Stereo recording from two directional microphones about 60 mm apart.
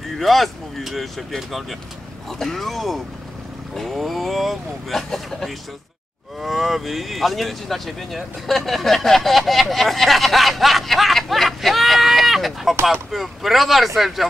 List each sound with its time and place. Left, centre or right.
0.2 s speech: centre